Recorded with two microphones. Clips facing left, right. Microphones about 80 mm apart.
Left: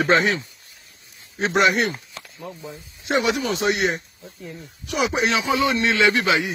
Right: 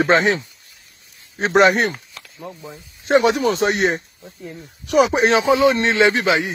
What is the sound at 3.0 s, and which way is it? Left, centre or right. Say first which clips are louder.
A man's voice: right 6 dB; right.